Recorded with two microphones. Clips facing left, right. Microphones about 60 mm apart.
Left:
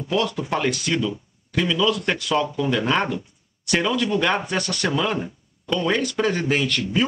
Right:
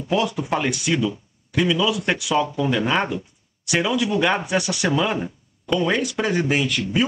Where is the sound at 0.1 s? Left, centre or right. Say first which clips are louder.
Right 1 dB; centre.